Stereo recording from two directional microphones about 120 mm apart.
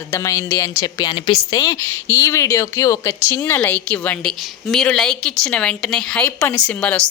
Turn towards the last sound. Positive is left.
turn(degrees=10)  # may be behind; listen again after turning